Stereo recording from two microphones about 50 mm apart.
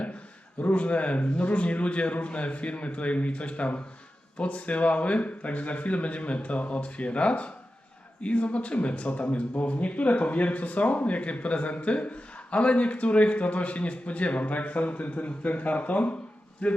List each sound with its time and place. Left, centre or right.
0.6 s speech: left